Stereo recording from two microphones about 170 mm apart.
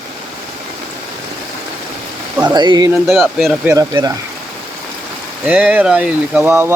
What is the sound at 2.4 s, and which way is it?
Speech, 25° right (ahead or behind).